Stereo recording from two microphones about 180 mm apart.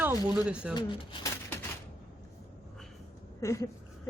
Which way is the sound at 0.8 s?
25° left (ahead or behind).